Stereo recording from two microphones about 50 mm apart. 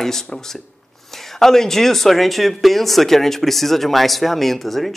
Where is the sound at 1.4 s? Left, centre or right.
Centre.